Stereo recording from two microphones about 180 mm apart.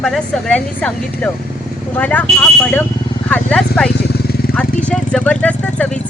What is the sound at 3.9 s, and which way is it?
Vehicle, 65° left (ahead or behind).